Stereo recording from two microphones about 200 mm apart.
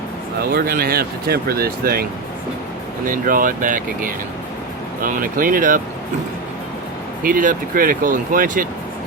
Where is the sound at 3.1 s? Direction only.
40° right (ahead or behind).